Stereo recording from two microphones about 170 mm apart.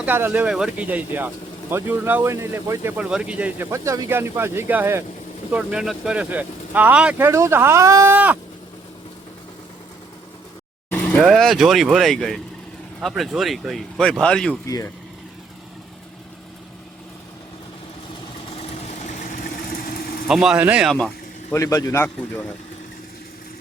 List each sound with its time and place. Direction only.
0.0 s speech: 10° right (ahead or behind)
10.8 s vehicle: 10° left (ahead or behind)
11.2 s speech: centre (ahead or behind)
18.9 s vehicle: 50° left (ahead or behind)
20.2 s speech: 5° right (ahead or behind)
21.5 s a man's voice: 20° left (ahead or behind)